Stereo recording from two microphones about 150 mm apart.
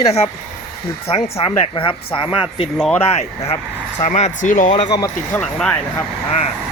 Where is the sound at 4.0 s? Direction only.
50° left (ahead or behind).